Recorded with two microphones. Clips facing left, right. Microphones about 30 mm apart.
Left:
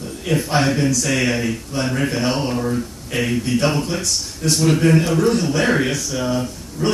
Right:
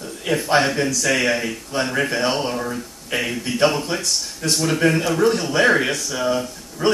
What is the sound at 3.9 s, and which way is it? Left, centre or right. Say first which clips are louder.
Speech: left 1 dB; centre.